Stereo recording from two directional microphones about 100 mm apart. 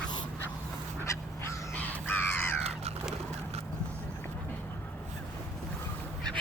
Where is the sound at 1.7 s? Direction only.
15° left (ahead or behind).